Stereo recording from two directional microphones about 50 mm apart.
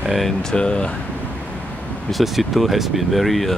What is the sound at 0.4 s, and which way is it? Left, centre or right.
Speech, centre.